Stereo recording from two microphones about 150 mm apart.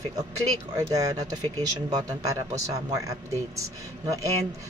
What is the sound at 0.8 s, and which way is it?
Speech, 25° right (ahead or behind).